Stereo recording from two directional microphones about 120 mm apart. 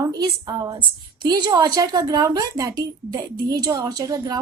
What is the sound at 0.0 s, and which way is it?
A woman's voice, 30° right (ahead or behind).